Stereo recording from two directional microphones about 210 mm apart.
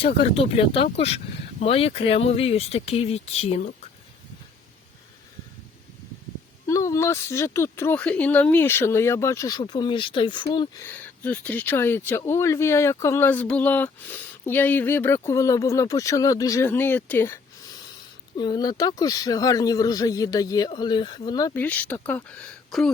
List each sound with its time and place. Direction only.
0.0 s speech: 25° left (ahead or behind)
6.7 s speech: 15° left (ahead or behind)
10.8 s speech: 5° left (ahead or behind)